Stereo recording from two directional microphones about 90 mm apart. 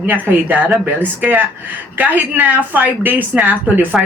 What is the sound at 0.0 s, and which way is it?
A woman's voice, 20° right (ahead or behind).